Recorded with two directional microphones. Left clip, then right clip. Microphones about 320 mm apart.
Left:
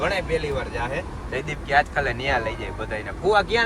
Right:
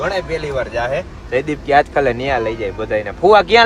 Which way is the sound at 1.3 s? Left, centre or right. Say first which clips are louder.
Right 9 dB; centre.